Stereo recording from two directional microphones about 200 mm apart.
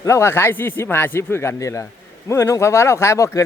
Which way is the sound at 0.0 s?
15° left (ahead or behind).